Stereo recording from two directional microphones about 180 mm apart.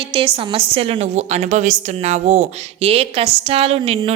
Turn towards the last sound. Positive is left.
turn(degrees=-35)  # may be behind; listen again after turning